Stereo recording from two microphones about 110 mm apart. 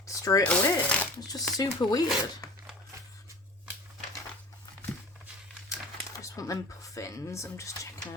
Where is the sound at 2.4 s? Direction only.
30° left (ahead or behind).